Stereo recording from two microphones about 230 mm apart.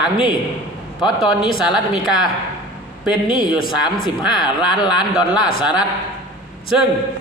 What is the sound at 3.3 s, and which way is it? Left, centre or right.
Speech, centre.